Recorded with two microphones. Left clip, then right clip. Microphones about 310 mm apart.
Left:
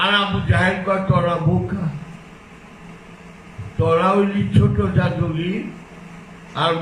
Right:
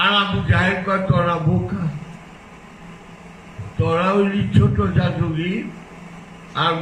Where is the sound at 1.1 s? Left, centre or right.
Centre.